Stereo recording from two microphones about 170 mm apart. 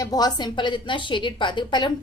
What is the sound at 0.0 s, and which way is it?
A woman's voice, 25° left (ahead or behind).